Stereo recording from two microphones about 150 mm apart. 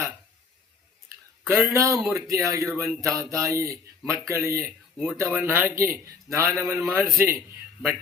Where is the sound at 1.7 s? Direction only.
20° right (ahead or behind).